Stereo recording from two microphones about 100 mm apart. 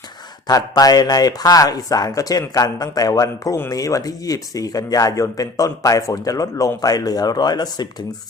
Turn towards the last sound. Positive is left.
turn(degrees=45)  # may be behind; listen again after turning